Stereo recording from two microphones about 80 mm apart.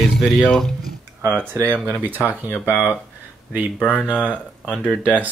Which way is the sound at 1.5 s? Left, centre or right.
Right.